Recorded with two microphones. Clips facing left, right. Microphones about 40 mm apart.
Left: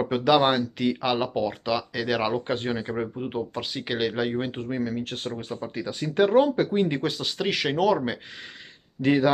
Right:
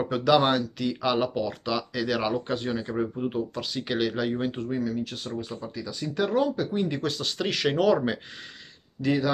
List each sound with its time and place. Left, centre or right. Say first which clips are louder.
0.0 s speech: left 1 dB; centre; by 7.0 s left
7.0 s speech: left 1 dB; centre
9.0 s speech: left 4 dB; left